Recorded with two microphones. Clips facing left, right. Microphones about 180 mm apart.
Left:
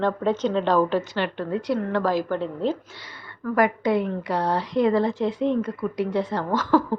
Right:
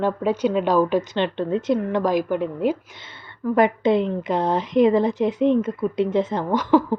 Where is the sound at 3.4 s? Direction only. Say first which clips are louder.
Right 3 dB; 25° right (ahead or behind).